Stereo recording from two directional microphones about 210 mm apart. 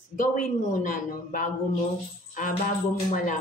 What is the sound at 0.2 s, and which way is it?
A man's voice, 40° left (ahead or behind).